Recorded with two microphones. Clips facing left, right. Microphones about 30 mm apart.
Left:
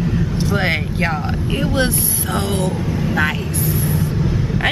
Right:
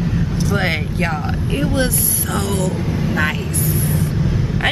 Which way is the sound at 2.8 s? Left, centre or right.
Centre.